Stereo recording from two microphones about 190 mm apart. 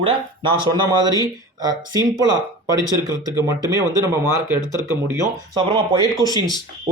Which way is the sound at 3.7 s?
15° right (ahead or behind).